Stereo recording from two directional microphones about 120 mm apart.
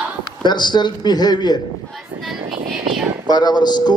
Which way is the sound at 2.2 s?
5° right (ahead or behind).